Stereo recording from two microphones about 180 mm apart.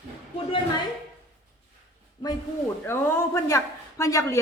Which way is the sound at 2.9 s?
15° left (ahead or behind).